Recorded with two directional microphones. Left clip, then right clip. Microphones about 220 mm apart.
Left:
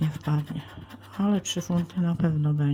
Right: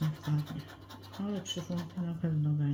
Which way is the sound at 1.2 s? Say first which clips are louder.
Left 10 dB; 45° left (ahead or behind).